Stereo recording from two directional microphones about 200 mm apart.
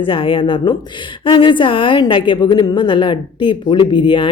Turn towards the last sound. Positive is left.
turn(degrees=25)  # may be behind; listen again after turning